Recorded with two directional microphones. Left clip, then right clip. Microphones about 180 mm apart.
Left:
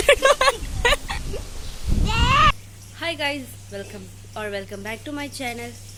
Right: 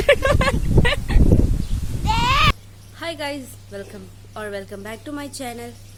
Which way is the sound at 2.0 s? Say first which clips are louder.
Even; 30° right (ahead or behind).